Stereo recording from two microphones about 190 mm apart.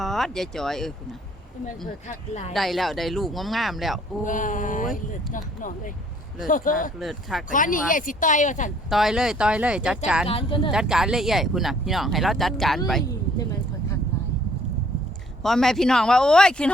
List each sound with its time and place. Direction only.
0.0 s speech: centre (ahead or behind)
2.5 s speech: centre (ahead or behind)
4.2 s speech: 45° left (ahead or behind)
7.0 s speech: centre (ahead or behind)
7.5 s speech: 45° left (ahead or behind)
8.9 s speech: centre (ahead or behind)
10.2 s speech: 30° left (ahead or behind)
10.7 s speech: 5° right (ahead or behind)
15.4 s speech: centre (ahead or behind)